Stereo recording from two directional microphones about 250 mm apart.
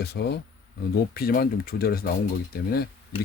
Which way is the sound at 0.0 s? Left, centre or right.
Left.